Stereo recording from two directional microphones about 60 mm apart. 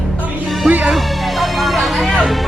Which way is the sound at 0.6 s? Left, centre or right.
Right.